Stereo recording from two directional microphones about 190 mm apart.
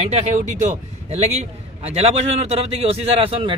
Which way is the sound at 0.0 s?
35° right (ahead or behind).